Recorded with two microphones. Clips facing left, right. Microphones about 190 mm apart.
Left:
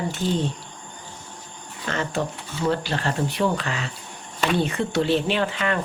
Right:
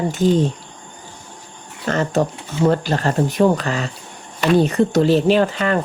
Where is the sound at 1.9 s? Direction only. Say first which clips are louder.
Right 7 dB; 40° right (ahead or behind).